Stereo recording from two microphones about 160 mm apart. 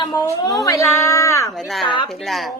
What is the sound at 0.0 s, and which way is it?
A woman's voice, 30° left (ahead or behind).